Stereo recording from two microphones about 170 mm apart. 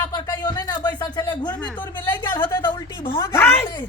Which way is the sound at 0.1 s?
25° left (ahead or behind).